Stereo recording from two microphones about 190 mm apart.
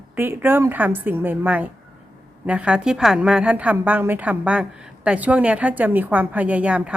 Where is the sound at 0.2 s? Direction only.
10° right (ahead or behind).